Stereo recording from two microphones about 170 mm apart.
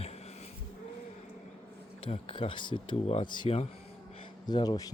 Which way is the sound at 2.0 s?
30° left (ahead or behind).